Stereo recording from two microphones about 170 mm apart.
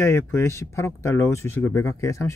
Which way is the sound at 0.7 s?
15° left (ahead or behind).